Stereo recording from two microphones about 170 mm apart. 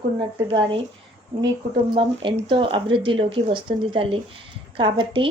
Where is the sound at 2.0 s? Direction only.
30° right (ahead or behind).